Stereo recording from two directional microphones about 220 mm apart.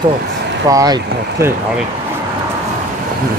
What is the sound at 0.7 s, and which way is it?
Speech, 15° right (ahead or behind).